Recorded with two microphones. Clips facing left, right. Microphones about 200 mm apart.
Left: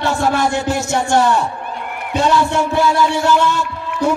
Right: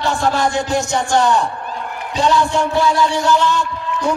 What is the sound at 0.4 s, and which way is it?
Speech, 5° left (ahead or behind).